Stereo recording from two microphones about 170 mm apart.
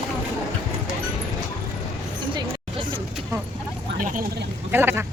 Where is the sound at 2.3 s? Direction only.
30° right (ahead or behind).